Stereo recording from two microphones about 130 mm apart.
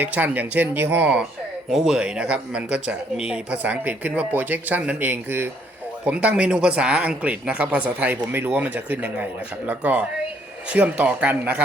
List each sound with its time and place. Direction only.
0.0 s speech: 15° right (ahead or behind)